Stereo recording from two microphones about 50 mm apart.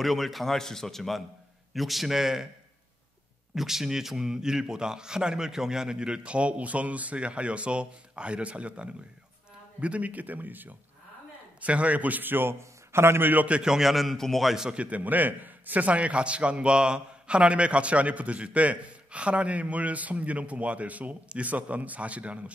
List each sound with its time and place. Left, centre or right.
0.0 s a man's voice: centre
3.5 s a man's voice: centre; by 10.7 s right
11.6 s a man's voice: right
13.5 s a man's voice: centre
14.5 s a man's voice: centre
14.8 s a man's voice: right